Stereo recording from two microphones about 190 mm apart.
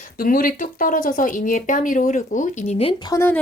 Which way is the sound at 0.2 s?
50° left (ahead or behind).